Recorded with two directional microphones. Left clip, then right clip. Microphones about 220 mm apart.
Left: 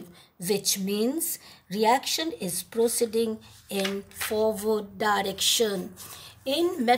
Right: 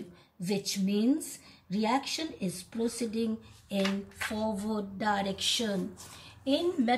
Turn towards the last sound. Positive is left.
turn(degrees=45)  # may be behind; listen again after turning